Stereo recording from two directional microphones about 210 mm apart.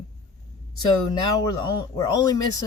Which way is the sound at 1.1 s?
20° left (ahead or behind).